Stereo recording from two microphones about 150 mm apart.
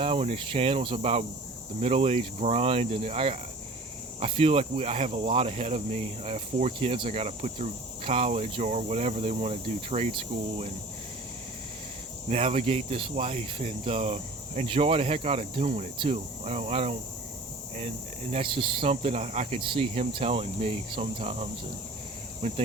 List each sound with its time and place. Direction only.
0.0 s cricket: 40° right (ahead or behind)
4.2 s speech: 40° right (ahead or behind)
12.3 s speech: 45° right (ahead or behind)
22.4 s speech: 40° right (ahead or behind)